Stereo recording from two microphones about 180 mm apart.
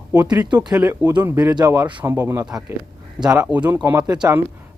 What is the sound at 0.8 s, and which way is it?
Speech, 15° right (ahead or behind).